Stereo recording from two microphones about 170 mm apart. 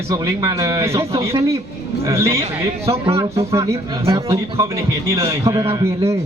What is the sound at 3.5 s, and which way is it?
A man's voice, 20° right (ahead or behind).